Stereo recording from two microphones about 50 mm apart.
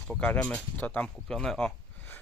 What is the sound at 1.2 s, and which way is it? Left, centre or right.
Speech, centre.